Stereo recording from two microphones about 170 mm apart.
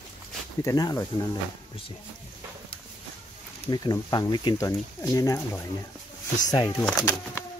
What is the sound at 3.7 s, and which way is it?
Speech, 25° left (ahead or behind).